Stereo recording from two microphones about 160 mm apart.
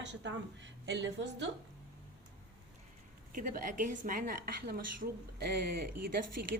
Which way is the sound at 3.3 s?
60° right (ahead or behind).